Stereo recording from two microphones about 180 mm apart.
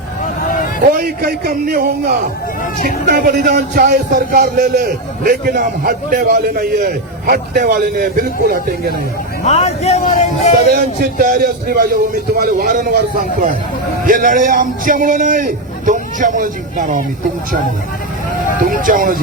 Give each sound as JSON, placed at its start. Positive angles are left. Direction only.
{"t": 0.9, "sound": "a man's voice", "side_deg": -55}
{"t": 9.4, "sound": "speech", "side_deg": 35}
{"t": 10.0, "sound": "speech", "side_deg": 50}
{"t": 10.7, "sound": "a man's voice", "side_deg": -55}
{"t": 18.6, "sound": "a man's voice", "side_deg": -50}